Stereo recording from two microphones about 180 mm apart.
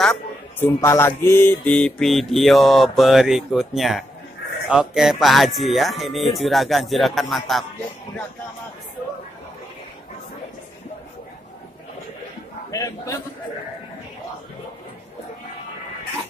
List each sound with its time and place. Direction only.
0.0 s a sound: 5° left (ahead or behind)
0.7 s mantra: 15° left (ahead or behind)
12.7 s a man's voice: 15° left (ahead or behind)